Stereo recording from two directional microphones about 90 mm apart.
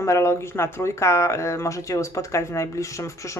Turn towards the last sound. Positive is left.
turn(degrees=35)  # may be behind; listen again after turning